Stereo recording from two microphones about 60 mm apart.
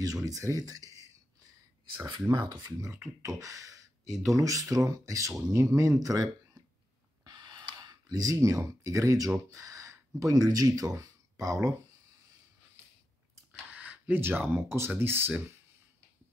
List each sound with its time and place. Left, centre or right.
0.0 s speech: right
3.2 s speech: right
7.7 s speech: right
13.5 s a sound: right
14.2 s speech: right